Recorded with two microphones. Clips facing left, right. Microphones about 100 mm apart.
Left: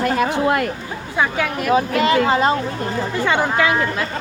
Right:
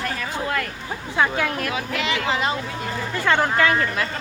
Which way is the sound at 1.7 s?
40° left (ahead or behind).